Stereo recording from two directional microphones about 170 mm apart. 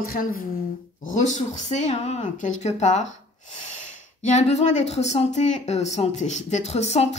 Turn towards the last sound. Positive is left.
turn(degrees=40)  # may be behind; listen again after turning